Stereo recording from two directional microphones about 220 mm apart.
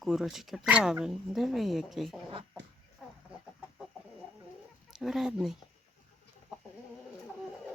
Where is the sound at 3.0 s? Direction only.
Centre (ahead or behind).